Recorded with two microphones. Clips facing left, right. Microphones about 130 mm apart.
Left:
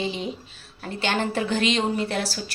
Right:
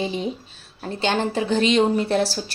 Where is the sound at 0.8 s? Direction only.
25° right (ahead or behind).